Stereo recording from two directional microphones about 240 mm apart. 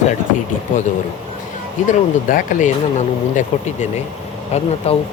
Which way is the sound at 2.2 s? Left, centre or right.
Left.